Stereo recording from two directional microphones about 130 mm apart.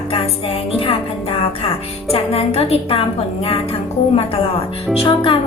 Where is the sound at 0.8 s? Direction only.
45° left (ahead or behind).